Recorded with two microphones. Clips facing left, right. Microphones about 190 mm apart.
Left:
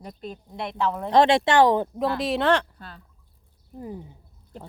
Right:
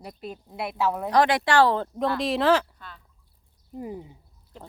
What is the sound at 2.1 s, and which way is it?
Speech, centre (ahead or behind).